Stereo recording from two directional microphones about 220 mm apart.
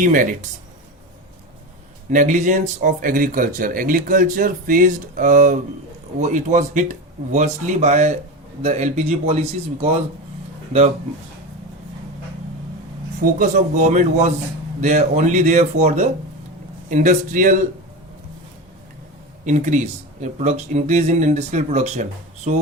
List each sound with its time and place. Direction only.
0.0 s speech: 35° right (ahead or behind)
2.0 s speech: 35° right (ahead or behind)
13.4 s speech: 35° right (ahead or behind)
19.5 s speech: 35° right (ahead or behind)